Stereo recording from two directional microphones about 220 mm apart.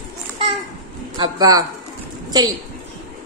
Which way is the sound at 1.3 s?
15° right (ahead or behind).